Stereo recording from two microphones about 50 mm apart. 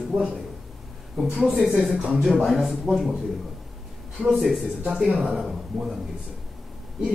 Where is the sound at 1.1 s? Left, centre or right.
Centre.